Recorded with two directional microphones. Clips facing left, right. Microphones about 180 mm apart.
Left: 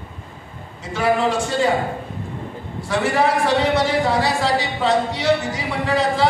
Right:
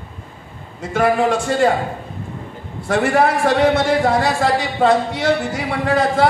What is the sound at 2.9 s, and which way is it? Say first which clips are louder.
A man's voice: right 3 dB; 50° right (ahead or behind).